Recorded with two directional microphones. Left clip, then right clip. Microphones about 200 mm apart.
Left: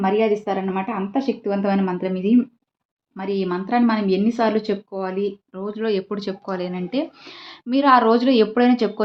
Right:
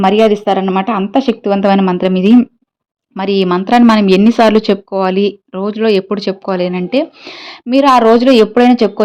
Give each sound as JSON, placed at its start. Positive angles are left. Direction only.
{"t": 0.0, "sound": "speech", "side_deg": -60}